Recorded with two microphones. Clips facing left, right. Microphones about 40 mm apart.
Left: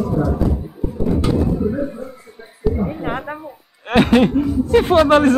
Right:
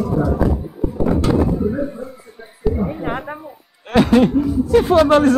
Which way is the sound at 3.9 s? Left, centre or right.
Left.